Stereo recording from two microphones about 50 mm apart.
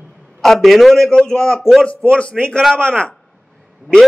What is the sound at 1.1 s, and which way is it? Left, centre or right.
Speech, centre.